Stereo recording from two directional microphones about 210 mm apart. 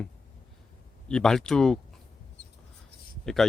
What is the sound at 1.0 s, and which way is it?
Speech, 5° left (ahead or behind).